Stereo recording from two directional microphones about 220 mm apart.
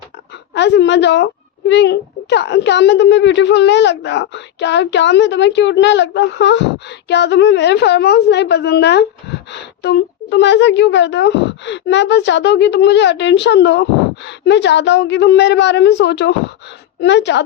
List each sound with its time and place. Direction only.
0.5 s a woman's voice: 50° left (ahead or behind)